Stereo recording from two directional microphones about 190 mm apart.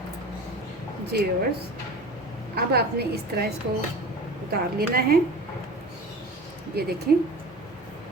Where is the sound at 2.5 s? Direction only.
55° right (ahead or behind).